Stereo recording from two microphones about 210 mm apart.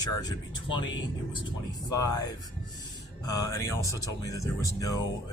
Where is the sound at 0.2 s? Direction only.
20° left (ahead or behind).